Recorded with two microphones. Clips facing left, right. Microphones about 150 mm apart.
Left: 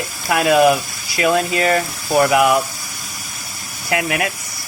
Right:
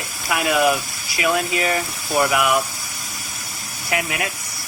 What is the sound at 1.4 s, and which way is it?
Speech, 30° left (ahead or behind).